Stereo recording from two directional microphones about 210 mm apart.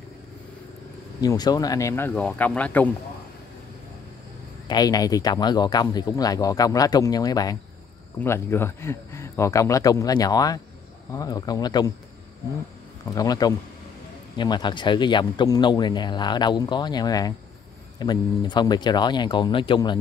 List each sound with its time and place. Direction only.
1.2 s speech: 20° left (ahead or behind)
4.6 s speech: 20° left (ahead or behind)
13.1 s speech: 15° left (ahead or behind)